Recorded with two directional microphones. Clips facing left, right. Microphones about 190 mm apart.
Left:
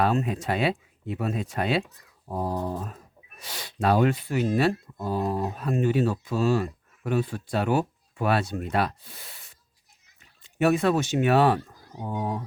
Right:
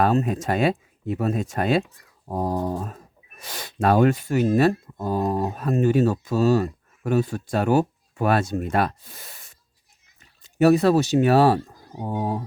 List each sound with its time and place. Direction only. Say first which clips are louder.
0.0 s speech: right 4 dB; 40° right (ahead or behind)